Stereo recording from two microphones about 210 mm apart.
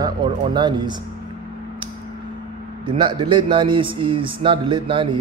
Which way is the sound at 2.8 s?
20° right (ahead or behind).